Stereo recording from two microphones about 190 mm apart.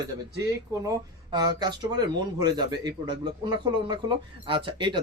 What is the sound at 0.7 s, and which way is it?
Speech, 20° right (ahead or behind).